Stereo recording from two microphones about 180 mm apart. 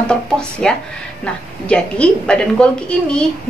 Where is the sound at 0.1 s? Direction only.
5° left (ahead or behind).